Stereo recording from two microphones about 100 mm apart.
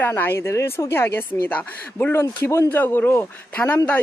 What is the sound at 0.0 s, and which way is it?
Speech, 20° left (ahead or behind).